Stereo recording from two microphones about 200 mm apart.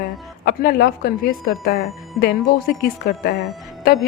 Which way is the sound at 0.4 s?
45° left (ahead or behind).